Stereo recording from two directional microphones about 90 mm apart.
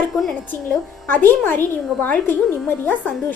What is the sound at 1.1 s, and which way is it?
A woman's voice, 20° left (ahead or behind).